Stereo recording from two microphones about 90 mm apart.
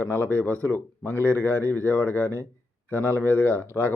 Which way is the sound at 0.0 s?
25° left (ahead or behind).